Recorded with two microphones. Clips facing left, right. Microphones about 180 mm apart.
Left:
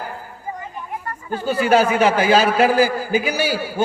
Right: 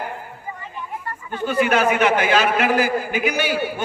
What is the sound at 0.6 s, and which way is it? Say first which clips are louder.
Speech: left 2 dB; 40° left (ahead or behind).